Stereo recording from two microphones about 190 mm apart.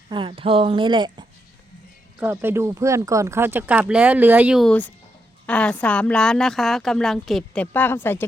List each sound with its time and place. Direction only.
0.1 s a woman's voice: 25° right (ahead or behind)
2.1 s a woman's voice: 10° right (ahead or behind); by 8.2 s 10° left (ahead or behind)